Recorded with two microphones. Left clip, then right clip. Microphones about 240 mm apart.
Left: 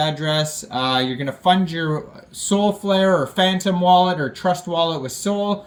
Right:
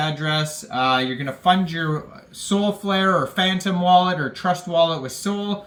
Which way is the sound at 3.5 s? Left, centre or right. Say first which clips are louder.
Left 1 dB; centre.